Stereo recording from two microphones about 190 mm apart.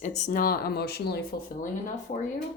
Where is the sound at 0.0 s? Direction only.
40° left (ahead or behind); by 1.2 s 60° left (ahead or behind).